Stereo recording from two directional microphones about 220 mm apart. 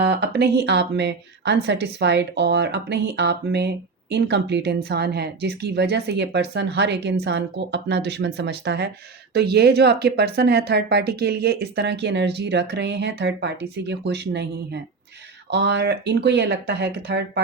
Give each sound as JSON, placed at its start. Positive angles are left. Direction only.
{"t": 0.0, "sound": "a woman's voice", "side_deg": -50}